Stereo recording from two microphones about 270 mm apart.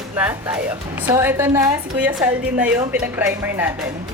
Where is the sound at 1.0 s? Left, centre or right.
Centre.